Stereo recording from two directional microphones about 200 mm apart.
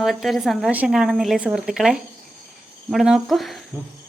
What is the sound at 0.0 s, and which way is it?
A woman's voice, centre (ahead or behind).